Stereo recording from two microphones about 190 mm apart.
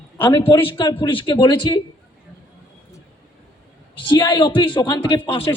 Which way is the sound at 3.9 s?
25° left (ahead or behind).